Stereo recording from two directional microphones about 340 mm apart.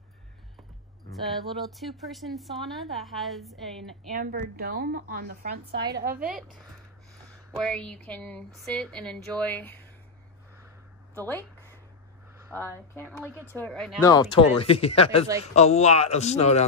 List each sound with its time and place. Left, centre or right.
1.5 s speech: centre
4.1 s speech: right
6.0 s speech: centre
11.1 s speech: centre
12.5 s speech: centre